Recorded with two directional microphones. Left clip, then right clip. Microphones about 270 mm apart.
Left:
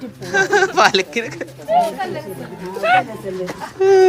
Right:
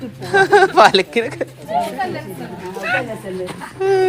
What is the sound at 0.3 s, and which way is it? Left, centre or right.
A man's voice, centre.